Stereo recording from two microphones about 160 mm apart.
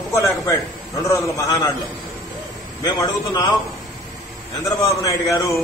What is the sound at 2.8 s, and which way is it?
Speech, 25° left (ahead or behind).